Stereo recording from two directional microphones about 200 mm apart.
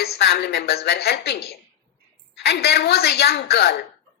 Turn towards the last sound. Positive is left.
turn(degrees=55)  # may be behind; listen again after turning